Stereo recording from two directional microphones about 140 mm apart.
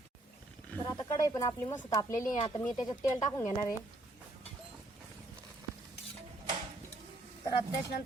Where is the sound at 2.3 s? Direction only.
35° left (ahead or behind).